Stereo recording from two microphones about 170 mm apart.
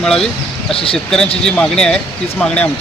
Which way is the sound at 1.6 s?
5° left (ahead or behind).